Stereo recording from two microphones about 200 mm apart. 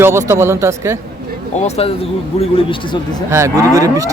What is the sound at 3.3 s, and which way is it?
Speech, 15° right (ahead or behind).